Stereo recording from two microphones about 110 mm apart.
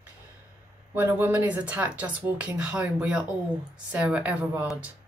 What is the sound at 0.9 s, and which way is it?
A woman's voice, 15° right (ahead or behind).